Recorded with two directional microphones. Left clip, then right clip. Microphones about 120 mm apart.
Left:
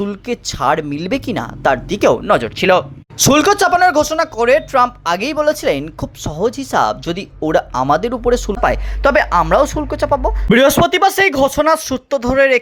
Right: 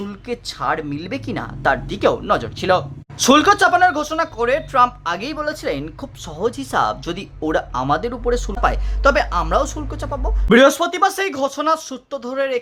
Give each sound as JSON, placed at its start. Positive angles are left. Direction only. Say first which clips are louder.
{"t": 0.0, "sound": "speech", "louder": "left 6 dB", "side_deg": 35}